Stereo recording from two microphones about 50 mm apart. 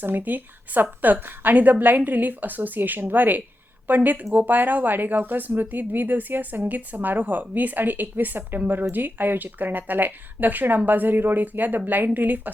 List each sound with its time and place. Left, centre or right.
0.0 s speech: right